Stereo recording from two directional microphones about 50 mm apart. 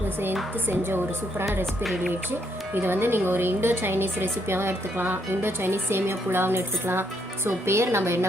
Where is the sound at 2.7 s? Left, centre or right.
Right.